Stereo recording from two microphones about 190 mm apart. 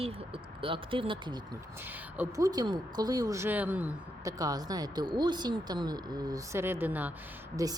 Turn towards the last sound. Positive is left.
turn(degrees=-20)  # may be behind; listen again after turning